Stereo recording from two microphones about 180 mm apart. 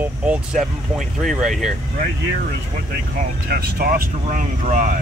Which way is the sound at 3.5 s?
60° right (ahead or behind).